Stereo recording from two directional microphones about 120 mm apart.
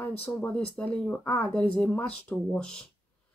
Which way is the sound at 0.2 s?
15° left (ahead or behind).